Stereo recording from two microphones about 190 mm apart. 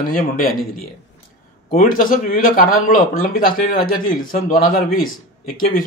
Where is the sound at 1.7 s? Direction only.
45° left (ahead or behind).